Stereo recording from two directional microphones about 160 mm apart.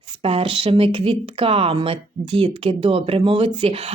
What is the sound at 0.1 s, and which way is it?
Speech, 35° right (ahead or behind).